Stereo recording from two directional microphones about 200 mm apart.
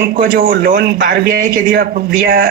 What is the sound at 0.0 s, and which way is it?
A man's voice, 45° right (ahead or behind).